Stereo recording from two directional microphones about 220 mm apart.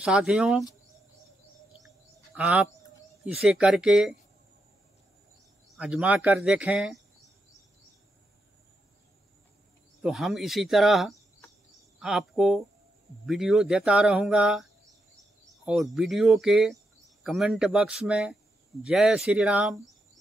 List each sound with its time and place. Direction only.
0.0 s a man's voice: 5° right (ahead or behind)
2.3 s a man's voice: 5° right (ahead or behind)
5.8 s a man's voice: 5° right (ahead or behind)
10.0 s a man's voice: centre (ahead or behind)